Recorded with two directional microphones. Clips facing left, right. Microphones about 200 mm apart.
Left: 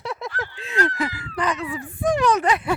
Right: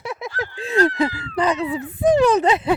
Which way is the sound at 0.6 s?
35° right (ahead or behind).